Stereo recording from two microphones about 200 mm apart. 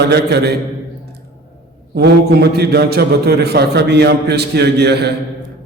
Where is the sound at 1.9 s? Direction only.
55° right (ahead or behind).